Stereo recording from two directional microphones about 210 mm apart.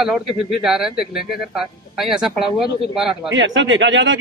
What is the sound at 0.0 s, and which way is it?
Speech, centre (ahead or behind).